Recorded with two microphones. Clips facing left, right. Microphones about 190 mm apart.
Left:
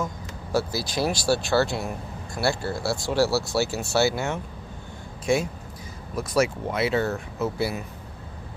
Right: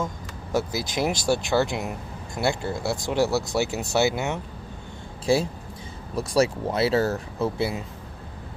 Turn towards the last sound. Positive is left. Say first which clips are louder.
# right 1 dB
turn(degrees=-25)  # may be behind; listen again after turning